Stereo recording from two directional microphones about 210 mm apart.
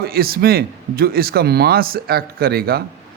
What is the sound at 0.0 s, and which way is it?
A man's voice, 45° right (ahead or behind).